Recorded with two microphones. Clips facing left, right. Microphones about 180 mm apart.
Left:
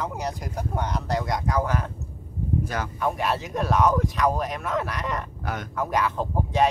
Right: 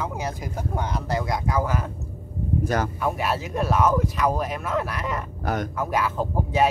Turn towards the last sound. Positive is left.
turn(degrees=-5)  # may be behind; listen again after turning